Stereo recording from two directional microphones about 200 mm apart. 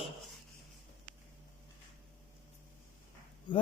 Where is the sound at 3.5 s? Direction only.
25° left (ahead or behind).